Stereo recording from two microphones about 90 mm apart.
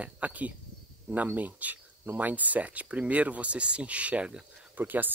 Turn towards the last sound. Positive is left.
turn(degrees=-20)  # may be behind; listen again after turning